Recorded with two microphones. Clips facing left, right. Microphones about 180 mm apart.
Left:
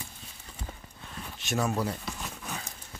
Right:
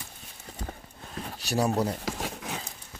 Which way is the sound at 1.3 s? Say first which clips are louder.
Right 3 dB; 35° right (ahead or behind).